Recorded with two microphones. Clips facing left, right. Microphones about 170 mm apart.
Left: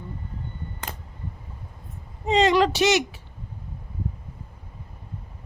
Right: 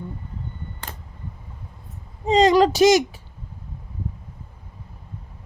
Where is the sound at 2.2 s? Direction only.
40° right (ahead or behind).